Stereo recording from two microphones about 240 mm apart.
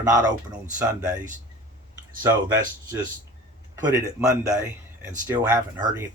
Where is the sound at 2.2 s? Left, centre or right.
Centre.